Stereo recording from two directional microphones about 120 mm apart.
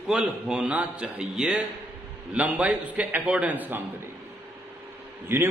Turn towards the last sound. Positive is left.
turn(degrees=-20)  # may be behind; listen again after turning